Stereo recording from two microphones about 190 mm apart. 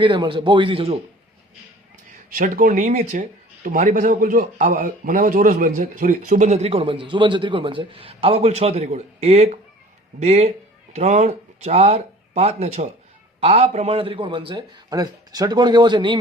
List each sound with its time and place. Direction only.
0.0 s a man's voice: 25° right (ahead or behind)
2.3 s a man's voice: 45° right (ahead or behind); by 16.2 s 25° right (ahead or behind)